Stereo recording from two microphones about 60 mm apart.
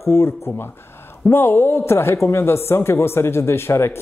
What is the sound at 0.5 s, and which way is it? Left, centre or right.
Speech, left.